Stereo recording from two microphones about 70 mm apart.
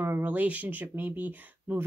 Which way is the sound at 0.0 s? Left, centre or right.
Right.